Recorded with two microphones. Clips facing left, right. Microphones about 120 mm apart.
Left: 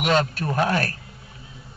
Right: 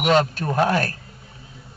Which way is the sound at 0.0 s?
40° right (ahead or behind).